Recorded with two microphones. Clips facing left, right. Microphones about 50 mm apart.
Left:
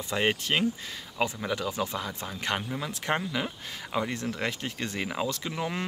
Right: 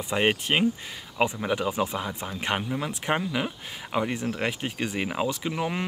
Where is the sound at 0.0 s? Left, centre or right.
Centre.